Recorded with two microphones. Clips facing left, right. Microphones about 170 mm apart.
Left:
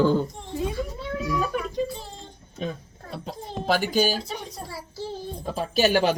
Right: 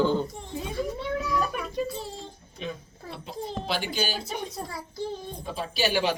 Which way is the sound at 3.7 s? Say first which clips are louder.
Left 9 dB; 45° left (ahead or behind).